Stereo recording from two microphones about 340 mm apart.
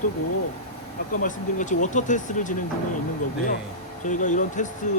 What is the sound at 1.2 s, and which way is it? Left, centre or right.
Speech, left.